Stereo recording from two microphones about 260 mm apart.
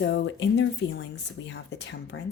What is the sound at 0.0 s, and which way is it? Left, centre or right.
Speech, left.